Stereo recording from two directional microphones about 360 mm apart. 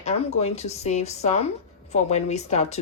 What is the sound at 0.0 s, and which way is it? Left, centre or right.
A woman's voice, centre.